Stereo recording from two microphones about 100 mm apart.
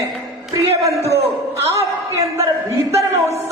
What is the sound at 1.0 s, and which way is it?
Speech, 90° right.